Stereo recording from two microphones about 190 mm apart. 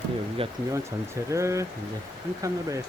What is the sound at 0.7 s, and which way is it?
Speech, 15° right (ahead or behind).